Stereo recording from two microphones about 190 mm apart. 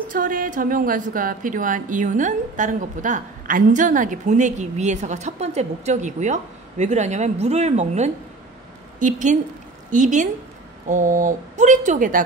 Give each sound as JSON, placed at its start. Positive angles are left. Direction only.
{"t": 0.1, "sound": "a woman's voice", "side_deg": -45}